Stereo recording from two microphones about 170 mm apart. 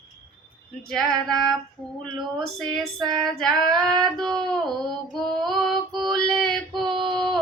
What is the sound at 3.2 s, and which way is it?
Female singing, 5° left (ahead or behind).